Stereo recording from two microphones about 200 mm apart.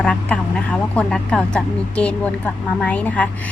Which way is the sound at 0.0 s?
5° left (ahead or behind).